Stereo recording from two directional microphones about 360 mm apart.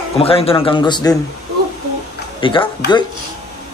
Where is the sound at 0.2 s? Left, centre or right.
Centre.